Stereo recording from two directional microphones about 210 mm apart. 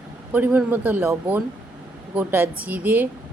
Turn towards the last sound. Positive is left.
turn(degrees=-10)  # may be behind; listen again after turning